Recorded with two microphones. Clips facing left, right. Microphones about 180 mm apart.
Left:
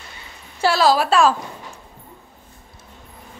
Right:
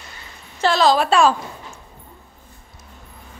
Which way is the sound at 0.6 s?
10° left (ahead or behind).